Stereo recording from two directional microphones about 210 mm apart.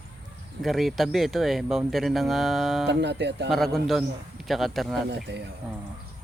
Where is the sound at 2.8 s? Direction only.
55° right (ahead or behind).